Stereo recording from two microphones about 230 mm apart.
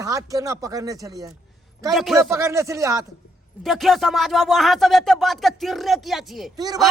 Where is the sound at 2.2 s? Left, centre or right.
Centre.